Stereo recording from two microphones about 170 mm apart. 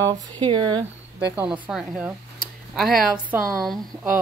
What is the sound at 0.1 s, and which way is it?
Speech, 25° right (ahead or behind).